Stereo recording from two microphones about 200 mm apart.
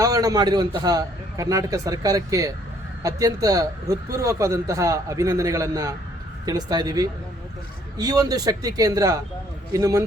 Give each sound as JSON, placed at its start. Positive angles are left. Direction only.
{"t": 0.0, "sound": "a man's voice", "side_deg": -15}